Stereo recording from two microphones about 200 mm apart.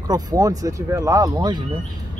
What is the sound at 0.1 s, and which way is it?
Speech, 20° right (ahead or behind).